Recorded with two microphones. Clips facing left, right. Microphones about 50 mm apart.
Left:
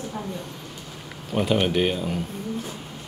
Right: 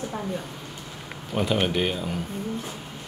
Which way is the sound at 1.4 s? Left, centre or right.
Centre.